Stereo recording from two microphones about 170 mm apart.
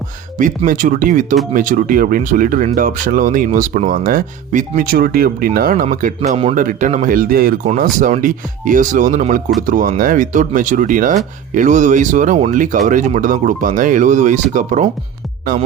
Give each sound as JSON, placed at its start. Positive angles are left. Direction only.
{"t": 0.3, "sound": "speech", "side_deg": -50}
{"t": 6.3, "sound": "speech", "side_deg": -35}
{"t": 6.6, "sound": "speech", "side_deg": -50}
{"t": 15.5, "sound": "speech", "side_deg": -55}